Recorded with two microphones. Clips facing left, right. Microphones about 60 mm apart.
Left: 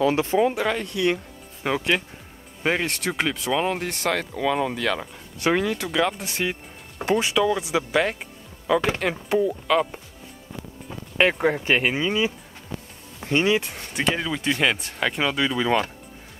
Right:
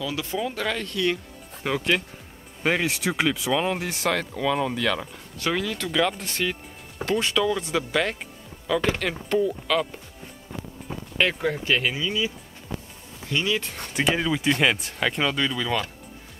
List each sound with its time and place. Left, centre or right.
0.0 s speech: left
0.6 s speech: centre
5.8 s speech: centre
11.1 s speech: left
13.9 s speech: centre
15.5 s speech: left